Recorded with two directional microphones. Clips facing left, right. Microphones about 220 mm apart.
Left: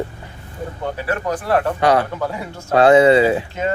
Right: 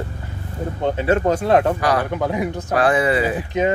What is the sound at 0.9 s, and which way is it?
Speech, 25° right (ahead or behind).